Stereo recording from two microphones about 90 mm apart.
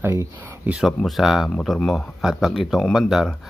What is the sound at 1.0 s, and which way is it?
Speech, 5° right (ahead or behind).